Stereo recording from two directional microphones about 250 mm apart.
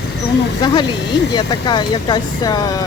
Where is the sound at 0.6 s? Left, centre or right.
Centre.